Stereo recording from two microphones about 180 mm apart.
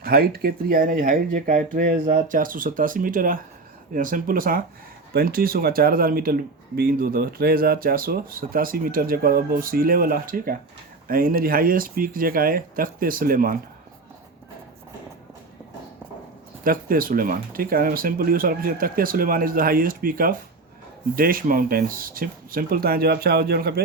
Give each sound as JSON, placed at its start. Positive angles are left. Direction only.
{"t": 0.0, "sound": "speech", "side_deg": -55}
{"t": 16.6, "sound": "speech", "side_deg": -50}